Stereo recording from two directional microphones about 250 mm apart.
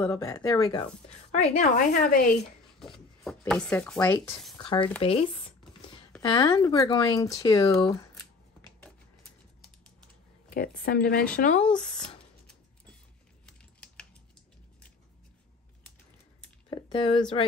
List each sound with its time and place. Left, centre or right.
0.0 s a woman's voice: centre; by 2.2 s left
2.8 s speech: centre
5.0 s a sound: left
6.2 s speech: centre
10.5 s speech: left
11.6 s speech: centre
13.5 s typing: centre
16.7 s speech: centre